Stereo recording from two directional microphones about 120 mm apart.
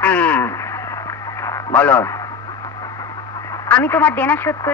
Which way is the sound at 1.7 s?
10° left (ahead or behind).